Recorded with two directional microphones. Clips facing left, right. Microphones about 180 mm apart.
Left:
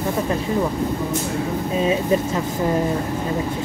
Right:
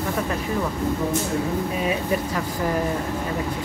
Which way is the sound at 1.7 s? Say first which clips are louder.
Left 5 dB; 25° left (ahead or behind).